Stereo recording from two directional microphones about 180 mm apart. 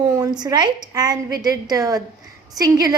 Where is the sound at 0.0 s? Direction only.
20° right (ahead or behind).